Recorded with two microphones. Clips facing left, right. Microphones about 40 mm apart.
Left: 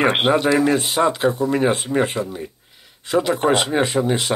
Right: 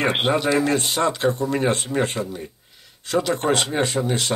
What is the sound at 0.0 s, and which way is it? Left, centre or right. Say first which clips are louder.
Speech: left 4 dB; centre.